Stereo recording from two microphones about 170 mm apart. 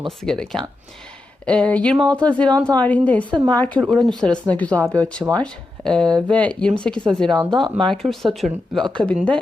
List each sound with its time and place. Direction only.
0.2 s speech: 5° left (ahead or behind)
7.3 s speech: 25° right (ahead or behind)
7.9 s speech: centre (ahead or behind)